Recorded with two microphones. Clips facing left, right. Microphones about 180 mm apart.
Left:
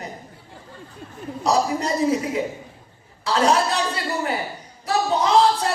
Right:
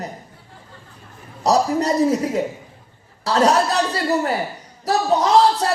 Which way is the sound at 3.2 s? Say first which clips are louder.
Right 3 dB; 40° right (ahead or behind).